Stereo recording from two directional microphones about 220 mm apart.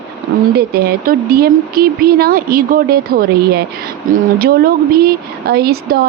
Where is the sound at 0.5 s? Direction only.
45° right (ahead or behind).